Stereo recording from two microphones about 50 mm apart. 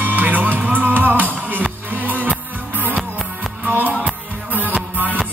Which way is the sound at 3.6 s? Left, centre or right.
Right.